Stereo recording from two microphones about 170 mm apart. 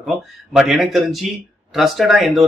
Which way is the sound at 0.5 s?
Centre (ahead or behind).